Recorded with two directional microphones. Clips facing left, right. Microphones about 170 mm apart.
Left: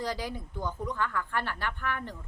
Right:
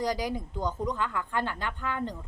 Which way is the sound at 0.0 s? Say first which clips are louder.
Right 4 dB; 15° right (ahead or behind).